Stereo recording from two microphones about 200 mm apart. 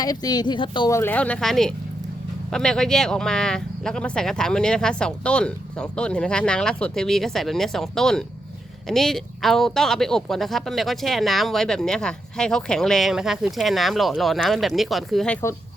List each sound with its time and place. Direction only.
0.0 s a woman's voice: 20° left (ahead or behind)